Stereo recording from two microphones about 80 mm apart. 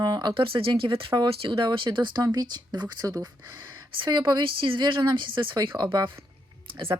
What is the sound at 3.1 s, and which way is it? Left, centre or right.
Speech, right.